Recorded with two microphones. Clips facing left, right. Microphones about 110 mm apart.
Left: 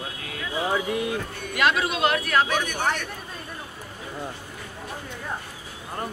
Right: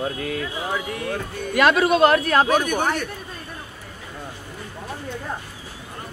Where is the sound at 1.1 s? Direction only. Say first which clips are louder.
Right 4 dB; 50° right (ahead or behind).